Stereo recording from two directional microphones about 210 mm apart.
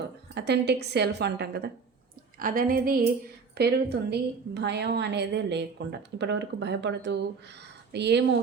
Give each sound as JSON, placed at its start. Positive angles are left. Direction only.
{"t": 0.3, "sound": "a woman's voice", "side_deg": -55}